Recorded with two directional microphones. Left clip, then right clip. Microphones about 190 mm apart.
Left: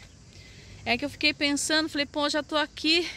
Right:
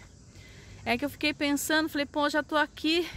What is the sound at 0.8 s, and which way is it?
Speech, 5° right (ahead or behind).